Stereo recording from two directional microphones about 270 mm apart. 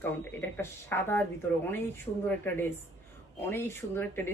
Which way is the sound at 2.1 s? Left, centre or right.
Centre.